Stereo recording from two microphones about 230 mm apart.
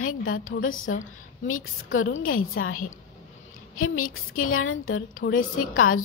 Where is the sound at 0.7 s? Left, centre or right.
Left.